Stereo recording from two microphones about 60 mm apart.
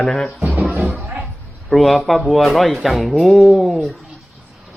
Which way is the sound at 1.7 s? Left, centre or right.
Centre.